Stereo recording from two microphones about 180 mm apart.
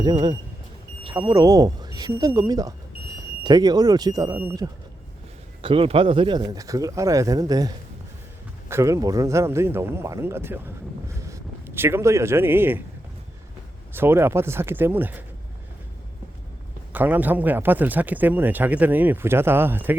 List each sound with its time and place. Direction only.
1.2 s speech: 20° right (ahead or behind)
8.7 s speech: 15° right (ahead or behind)
13.9 s speech: 10° right (ahead or behind)
16.9 s speech: 10° right (ahead or behind)